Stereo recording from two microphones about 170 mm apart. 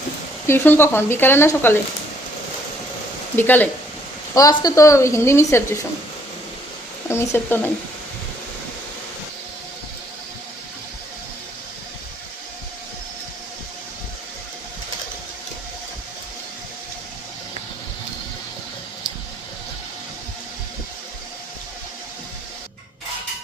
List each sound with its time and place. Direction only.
0.4 s speech: 15° left (ahead or behind)
3.3 s speech: 10° left (ahead or behind)
7.1 s speech: 15° left (ahead or behind)